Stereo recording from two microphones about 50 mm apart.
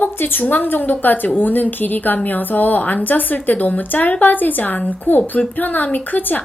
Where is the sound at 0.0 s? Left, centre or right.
Left.